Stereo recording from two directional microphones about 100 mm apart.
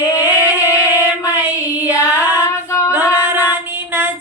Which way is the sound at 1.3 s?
20° right (ahead or behind).